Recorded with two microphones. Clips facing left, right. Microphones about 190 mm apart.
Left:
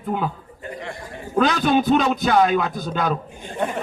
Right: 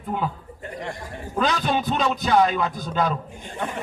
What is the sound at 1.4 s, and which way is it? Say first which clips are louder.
A man's voice: left 5 dB; 65° left (ahead or behind).